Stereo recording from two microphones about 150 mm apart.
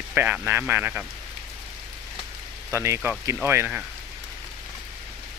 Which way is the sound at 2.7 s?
15° right (ahead or behind).